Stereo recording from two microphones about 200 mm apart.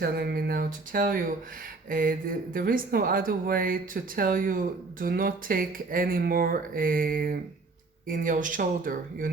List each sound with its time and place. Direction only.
0.0 s speech: 50° right (ahead or behind)